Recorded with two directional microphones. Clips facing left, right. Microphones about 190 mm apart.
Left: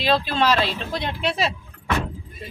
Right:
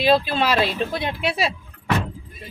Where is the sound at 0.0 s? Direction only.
10° right (ahead or behind).